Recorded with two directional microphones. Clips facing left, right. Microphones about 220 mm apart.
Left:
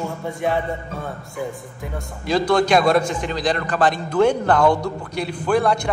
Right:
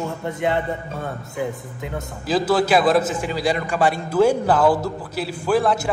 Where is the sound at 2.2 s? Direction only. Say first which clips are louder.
Left 1 dB; 5° right (ahead or behind).